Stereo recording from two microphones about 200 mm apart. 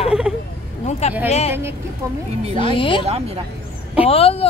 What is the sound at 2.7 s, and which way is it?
Speech, 25° left (ahead or behind).